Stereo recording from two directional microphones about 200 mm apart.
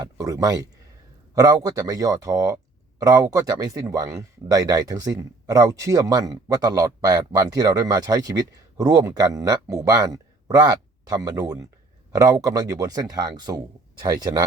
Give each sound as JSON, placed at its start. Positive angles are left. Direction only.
{"t": 0.0, "sound": "speech", "side_deg": -15}